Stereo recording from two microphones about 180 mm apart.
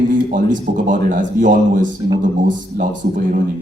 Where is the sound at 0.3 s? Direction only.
50° right (ahead or behind).